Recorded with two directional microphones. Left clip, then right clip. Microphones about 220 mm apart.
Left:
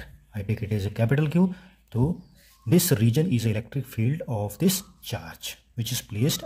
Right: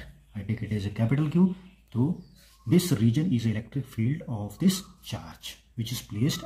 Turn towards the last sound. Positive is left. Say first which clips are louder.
# left 3 dB
turn(degrees=40)  # may be behind; listen again after turning